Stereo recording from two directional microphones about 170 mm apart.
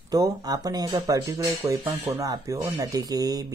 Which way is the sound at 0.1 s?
20° right (ahead or behind).